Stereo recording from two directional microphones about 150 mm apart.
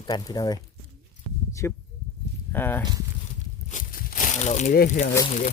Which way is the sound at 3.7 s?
65° left (ahead or behind).